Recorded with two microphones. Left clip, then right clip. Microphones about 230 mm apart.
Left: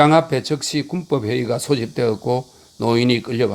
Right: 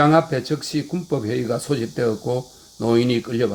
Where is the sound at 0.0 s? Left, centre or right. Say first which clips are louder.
Left 2 dB; left.